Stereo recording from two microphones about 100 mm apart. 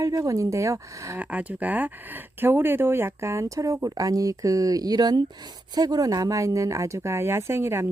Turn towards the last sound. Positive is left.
turn(degrees=-25)  # may be behind; listen again after turning